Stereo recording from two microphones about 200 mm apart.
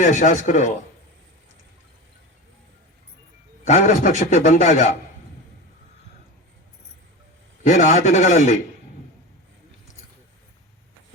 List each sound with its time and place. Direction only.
0.0 s a man's voice: 40° left (ahead or behind)
3.6 s a man's voice: 35° left (ahead or behind)
7.6 s a man's voice: 40° left (ahead or behind)